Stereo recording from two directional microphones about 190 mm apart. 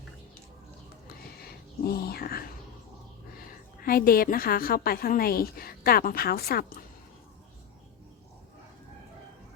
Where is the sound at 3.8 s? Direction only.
50° left (ahead or behind).